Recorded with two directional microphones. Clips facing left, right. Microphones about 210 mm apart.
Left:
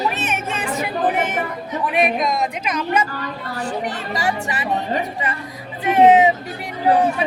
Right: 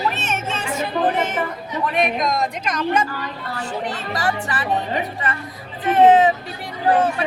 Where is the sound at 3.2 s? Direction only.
40° left (ahead or behind).